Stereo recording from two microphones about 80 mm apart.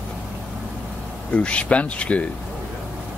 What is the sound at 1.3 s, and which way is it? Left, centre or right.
Speech, centre.